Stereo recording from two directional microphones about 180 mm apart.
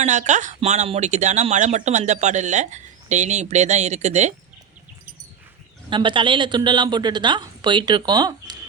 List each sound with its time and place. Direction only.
0.0 s speech: 40° right (ahead or behind)
5.9 s speech: 25° right (ahead or behind)